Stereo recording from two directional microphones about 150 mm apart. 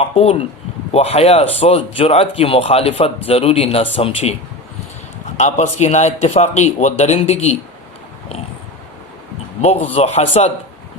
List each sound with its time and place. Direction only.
0.0 s speech: 40° left (ahead or behind)
5.4 s a man's voice: 50° left (ahead or behind)
9.6 s a man's voice: 40° left (ahead or behind)